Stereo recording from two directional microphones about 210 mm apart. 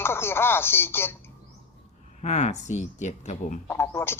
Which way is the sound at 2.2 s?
35° left (ahead or behind).